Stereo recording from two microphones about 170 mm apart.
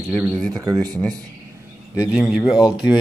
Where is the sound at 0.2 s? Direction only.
Centre (ahead or behind).